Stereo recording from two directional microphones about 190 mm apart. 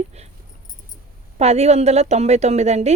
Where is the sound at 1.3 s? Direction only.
35° right (ahead or behind).